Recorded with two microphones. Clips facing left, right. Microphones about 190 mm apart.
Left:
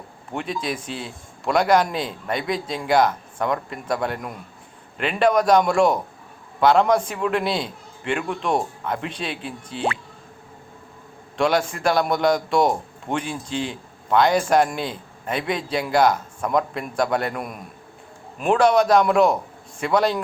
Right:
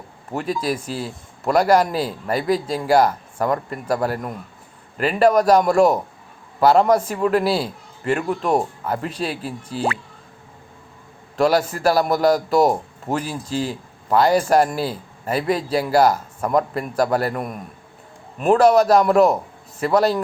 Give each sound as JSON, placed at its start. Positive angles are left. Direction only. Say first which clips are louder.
{"t": 0.3, "sound": "a man's voice", "louder": "right 4 dB", "side_deg": -5}
{"t": 11.3, "sound": "a man's voice", "louder": "right 3 dB", "side_deg": -5}